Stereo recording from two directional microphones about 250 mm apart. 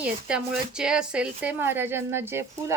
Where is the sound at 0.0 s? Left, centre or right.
Centre.